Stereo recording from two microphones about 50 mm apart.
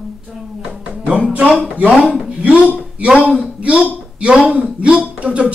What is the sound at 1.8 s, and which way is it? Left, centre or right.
Speech, right.